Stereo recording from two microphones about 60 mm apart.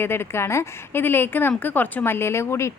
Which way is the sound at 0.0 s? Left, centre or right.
Left.